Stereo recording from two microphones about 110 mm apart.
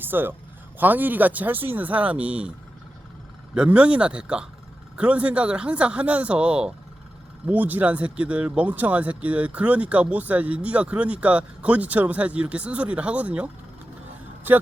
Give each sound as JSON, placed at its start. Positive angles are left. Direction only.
{"t": 0.0, "sound": "speech", "side_deg": -20}
{"t": 3.5, "sound": "speech", "side_deg": -10}